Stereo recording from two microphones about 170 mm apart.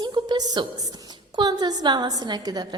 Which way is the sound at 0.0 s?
25° right (ahead or behind).